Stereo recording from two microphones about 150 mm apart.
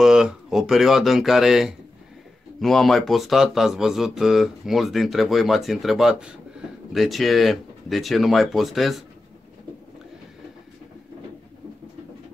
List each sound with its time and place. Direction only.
0.0 s speech: 5° right (ahead or behind)